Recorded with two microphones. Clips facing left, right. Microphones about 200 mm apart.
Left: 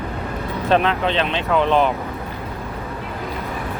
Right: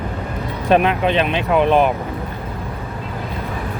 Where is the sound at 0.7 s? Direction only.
15° right (ahead or behind).